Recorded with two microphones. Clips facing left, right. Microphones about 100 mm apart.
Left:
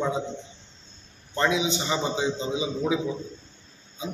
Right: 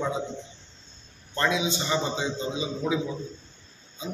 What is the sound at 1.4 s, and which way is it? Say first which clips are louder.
A man's voice: left 2 dB; 20° left (ahead or behind).